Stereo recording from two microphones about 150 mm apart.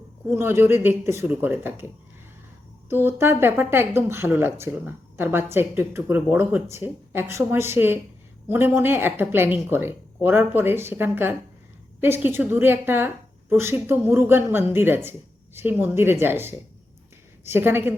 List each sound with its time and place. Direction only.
0.3 s speech: 15° right (ahead or behind)
2.9 s speech: 15° right (ahead or behind)